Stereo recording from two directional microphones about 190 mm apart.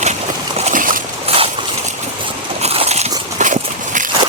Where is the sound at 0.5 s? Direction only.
40° right (ahead or behind).